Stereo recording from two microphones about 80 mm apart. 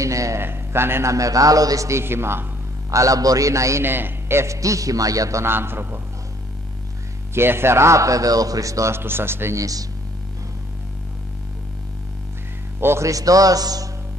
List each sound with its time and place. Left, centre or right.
0.0 s speech: right
0.4 s a man's voice: right
1.1 s a man's voice: right
2.9 s a man's voice: right
3.8 s a man's voice: right
5.4 s a man's voice: right
7.3 s speech: right
8.9 s a man's voice: right
9.6 s a man's voice: right
12.8 s speech: right
13.1 s a man's voice: right